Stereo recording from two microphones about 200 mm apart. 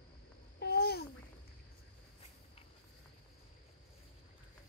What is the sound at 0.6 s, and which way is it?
Babbling, 50° left (ahead or behind).